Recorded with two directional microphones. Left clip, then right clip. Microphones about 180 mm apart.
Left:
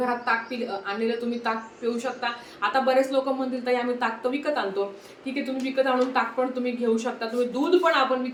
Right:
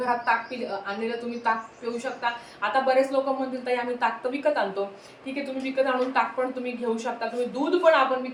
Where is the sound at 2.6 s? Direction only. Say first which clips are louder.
Even; 20° left (ahead or behind).